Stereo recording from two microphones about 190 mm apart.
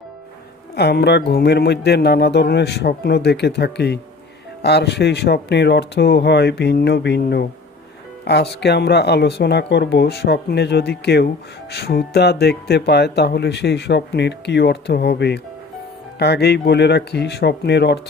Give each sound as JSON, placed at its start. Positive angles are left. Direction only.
{"t": 0.8, "sound": "speech", "side_deg": 60}